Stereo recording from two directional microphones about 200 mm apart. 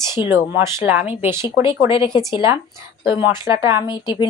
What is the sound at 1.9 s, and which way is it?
Speech, 25° left (ahead or behind).